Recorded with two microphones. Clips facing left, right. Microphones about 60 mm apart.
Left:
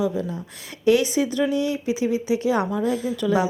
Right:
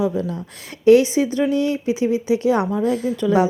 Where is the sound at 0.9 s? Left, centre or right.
Right.